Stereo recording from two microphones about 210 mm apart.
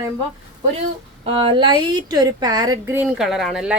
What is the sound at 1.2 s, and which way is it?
A woman's voice, 25° right (ahead or behind).